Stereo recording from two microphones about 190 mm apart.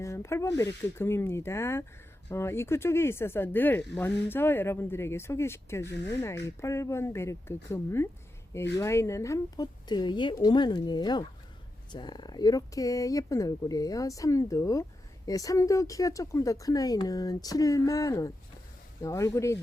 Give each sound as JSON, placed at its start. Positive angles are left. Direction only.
{"t": 0.0, "sound": "a woman's voice", "side_deg": 15}